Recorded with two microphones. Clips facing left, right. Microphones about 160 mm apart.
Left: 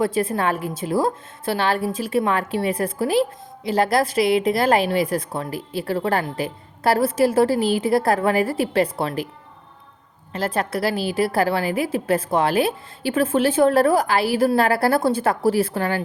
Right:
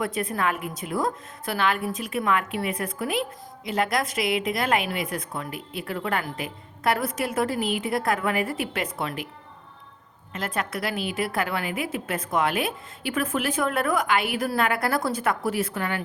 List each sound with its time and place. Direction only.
0.0 s a woman's voice: 30° left (ahead or behind)
10.3 s a woman's voice: 35° left (ahead or behind)